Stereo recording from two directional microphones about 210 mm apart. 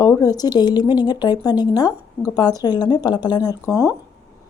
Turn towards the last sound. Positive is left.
turn(degrees=15)  # may be behind; listen again after turning